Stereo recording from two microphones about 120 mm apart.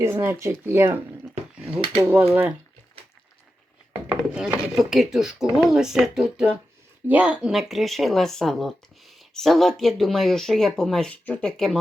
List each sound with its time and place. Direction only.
0.0 s speech: 20° right (ahead or behind)
4.2 s wood: 5° right (ahead or behind)
4.8 s speech: centre (ahead or behind)